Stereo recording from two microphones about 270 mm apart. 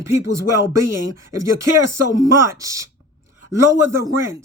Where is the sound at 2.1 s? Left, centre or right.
Centre.